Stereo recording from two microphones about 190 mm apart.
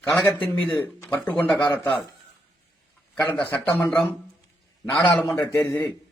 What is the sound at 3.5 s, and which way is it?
A man's voice, 10° left (ahead or behind).